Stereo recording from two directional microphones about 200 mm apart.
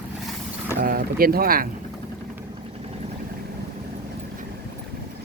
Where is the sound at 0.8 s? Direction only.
45° right (ahead or behind).